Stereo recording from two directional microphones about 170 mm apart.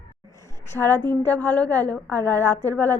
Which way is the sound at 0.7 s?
10° left (ahead or behind).